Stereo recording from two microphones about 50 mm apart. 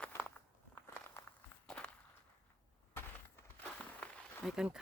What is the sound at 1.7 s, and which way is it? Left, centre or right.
Walk, centre.